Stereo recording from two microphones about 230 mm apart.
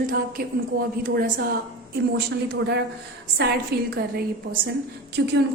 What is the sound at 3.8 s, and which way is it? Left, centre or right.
Speech, right.